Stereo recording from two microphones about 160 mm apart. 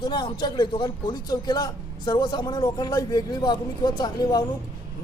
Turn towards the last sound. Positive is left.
turn(degrees=25)  # may be behind; listen again after turning